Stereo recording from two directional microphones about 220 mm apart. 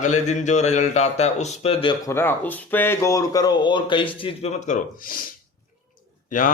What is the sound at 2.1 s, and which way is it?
Speech, 10° left (ahead or behind).